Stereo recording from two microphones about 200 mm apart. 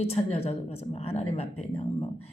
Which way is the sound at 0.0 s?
30° left (ahead or behind).